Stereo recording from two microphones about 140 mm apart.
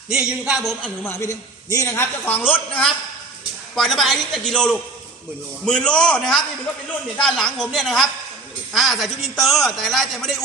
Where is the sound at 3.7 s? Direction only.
Centre (ahead or behind).